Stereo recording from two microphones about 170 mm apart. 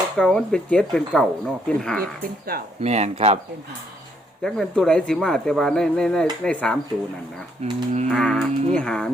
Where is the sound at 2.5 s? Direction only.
60° right (ahead or behind).